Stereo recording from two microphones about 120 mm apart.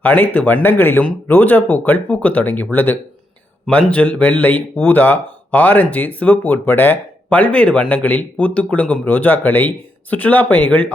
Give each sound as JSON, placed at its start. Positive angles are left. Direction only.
{"t": 0.0, "sound": "speech", "side_deg": 15}